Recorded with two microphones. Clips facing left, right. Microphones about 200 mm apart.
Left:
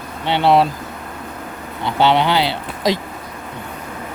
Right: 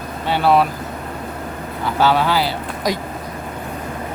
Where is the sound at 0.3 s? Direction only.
25° left (ahead or behind).